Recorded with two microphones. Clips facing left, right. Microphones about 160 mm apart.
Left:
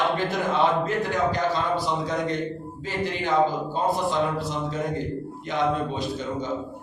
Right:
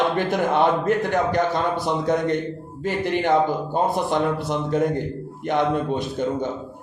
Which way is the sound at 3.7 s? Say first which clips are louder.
Right 3 dB; 60° right (ahead or behind).